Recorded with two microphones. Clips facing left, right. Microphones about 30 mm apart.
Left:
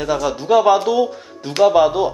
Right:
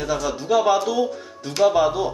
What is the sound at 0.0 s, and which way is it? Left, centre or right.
Speech, centre.